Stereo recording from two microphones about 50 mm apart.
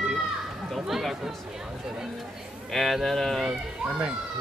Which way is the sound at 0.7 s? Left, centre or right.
Centre.